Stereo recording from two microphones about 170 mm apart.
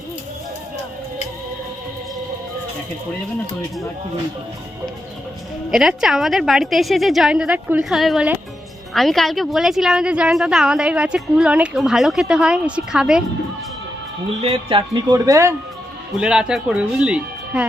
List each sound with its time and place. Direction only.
5.7 s a woman's voice: 5° right (ahead or behind)
14.4 s speech: 30° right (ahead or behind)
16.2 s a woman's voice: 5° right (ahead or behind)